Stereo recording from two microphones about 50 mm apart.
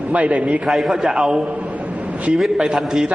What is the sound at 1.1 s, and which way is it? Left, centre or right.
A man's voice, centre.